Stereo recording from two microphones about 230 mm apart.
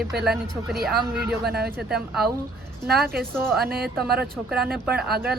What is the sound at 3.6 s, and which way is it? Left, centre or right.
Speech, right.